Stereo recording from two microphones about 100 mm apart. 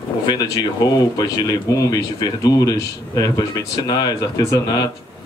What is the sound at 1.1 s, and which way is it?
Speech, 35° left (ahead or behind).